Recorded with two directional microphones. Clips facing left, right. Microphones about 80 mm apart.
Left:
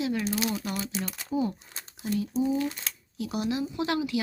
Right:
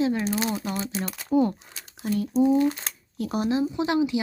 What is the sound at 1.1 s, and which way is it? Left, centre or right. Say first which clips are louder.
Speech: right 8 dB; right.